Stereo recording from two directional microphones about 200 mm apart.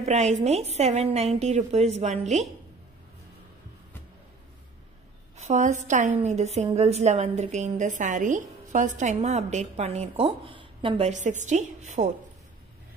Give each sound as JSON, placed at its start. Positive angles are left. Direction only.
{"t": 0.0, "sound": "a woman's voice", "side_deg": -35}
{"t": 5.4, "sound": "a woman's voice", "side_deg": -35}